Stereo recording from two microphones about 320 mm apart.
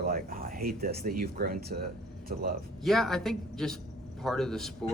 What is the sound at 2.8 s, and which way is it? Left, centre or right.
Speech, centre.